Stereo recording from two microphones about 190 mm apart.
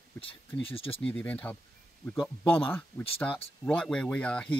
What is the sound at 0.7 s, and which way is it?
Speech, 30° left (ahead or behind).